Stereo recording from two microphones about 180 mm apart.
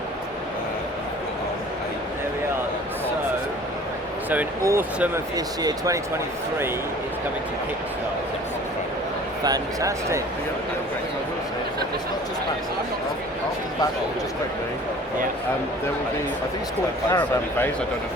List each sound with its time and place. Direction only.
4.3 s speech: 15° right (ahead or behind)
9.4 s speech: 20° right (ahead or behind)
17.1 s a man's voice: 10° left (ahead or behind)